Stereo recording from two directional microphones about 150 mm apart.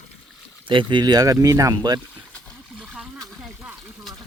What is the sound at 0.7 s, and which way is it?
Speech, 35° right (ahead or behind).